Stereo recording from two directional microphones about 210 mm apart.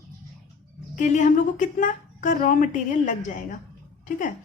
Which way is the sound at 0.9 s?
35° left (ahead or behind).